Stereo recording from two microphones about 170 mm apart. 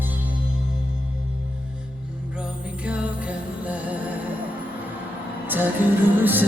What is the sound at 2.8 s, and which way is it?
Music, 5° right (ahead or behind).